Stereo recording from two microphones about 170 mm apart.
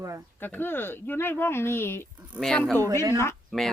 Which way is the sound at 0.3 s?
10° left (ahead or behind).